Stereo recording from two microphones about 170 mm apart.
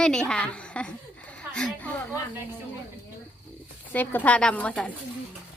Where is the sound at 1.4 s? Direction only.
5° left (ahead or behind).